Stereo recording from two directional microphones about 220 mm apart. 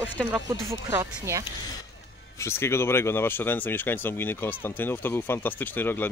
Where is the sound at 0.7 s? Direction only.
10° right (ahead or behind).